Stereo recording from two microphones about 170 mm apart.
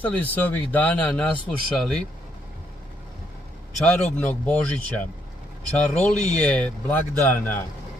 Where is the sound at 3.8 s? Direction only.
10° left (ahead or behind).